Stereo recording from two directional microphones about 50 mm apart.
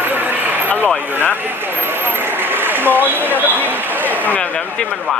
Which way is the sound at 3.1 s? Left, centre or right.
Right.